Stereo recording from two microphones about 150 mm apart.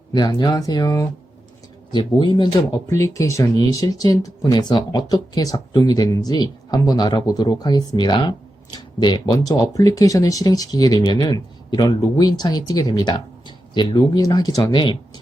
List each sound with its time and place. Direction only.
0.1 s speech: 30° left (ahead or behind)
2.9 s speech: 20° left (ahead or behind)